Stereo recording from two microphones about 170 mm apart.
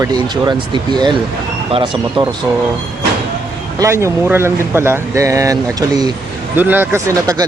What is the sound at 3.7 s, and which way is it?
Speech, 15° right (ahead or behind).